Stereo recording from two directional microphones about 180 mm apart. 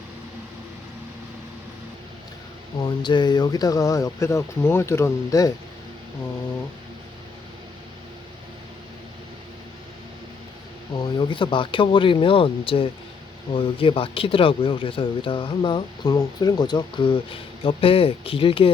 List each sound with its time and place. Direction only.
2.8 s speech: 25° left (ahead or behind)
10.9 s speech: 25° left (ahead or behind)